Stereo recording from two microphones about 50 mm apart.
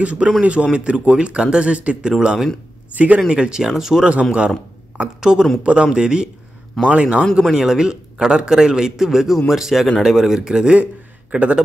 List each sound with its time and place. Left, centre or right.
0.0 s speech: right
2.9 s a man's voice: right
3.3 s a man's voice: centre
4.1 s speech: right
5.6 s speech: right
7.5 s a man's voice: centre